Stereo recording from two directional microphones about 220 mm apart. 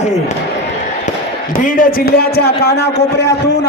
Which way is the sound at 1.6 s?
40° left (ahead or behind).